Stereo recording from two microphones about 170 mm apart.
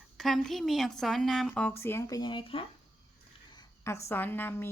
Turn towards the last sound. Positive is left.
turn(degrees=15)  # may be behind; listen again after turning